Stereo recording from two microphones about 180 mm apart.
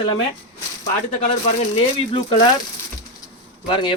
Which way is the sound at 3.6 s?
25° left (ahead or behind).